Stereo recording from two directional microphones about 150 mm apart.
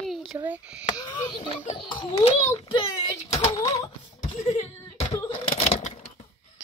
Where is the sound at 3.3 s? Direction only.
45° left (ahead or behind).